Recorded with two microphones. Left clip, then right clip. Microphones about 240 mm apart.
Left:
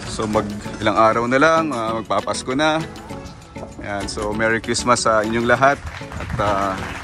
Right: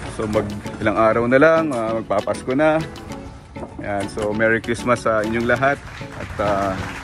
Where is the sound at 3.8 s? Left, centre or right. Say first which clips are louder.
Right 2 dB; centre.